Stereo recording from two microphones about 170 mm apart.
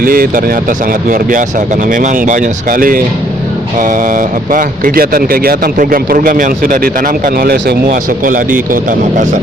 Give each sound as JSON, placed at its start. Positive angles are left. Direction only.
{"t": 0.0, "sound": "speech", "side_deg": -55}
{"t": 7.3, "sound": "speech", "side_deg": -65}